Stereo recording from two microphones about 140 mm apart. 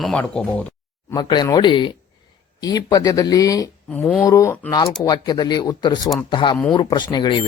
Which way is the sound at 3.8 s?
5° left (ahead or behind).